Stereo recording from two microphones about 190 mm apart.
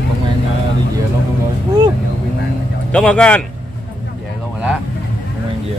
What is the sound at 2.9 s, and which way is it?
Speech, 5° left (ahead or behind).